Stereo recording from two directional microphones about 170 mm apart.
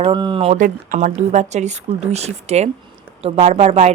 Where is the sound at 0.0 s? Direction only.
30° right (ahead or behind).